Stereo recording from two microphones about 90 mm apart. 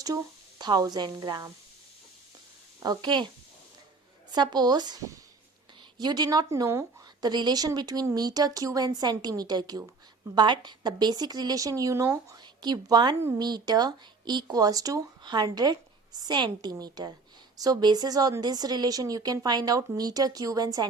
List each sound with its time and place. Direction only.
0.6 s a woman's voice: 50° right (ahead or behind)
2.8 s speech: 50° right (ahead or behind)
4.3 s a woman's voice: 50° right (ahead or behind)
6.0 s a woman's voice: 50° right (ahead or behind); by 12.4 s 35° right (ahead or behind)
12.4 s a woman's voice: 50° right (ahead or behind)
15.2 s a woman's voice: 55° right (ahead or behind)